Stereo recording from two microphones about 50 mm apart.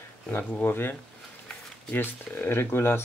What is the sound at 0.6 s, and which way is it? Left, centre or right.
Speech, left.